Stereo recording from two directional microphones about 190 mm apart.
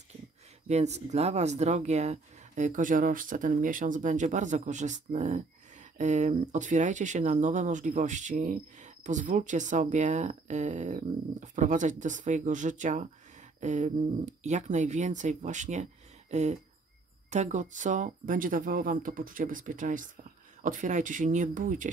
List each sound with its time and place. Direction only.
0.7 s speech: 35° right (ahead or behind)